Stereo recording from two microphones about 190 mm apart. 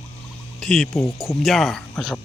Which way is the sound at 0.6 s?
5° left (ahead or behind).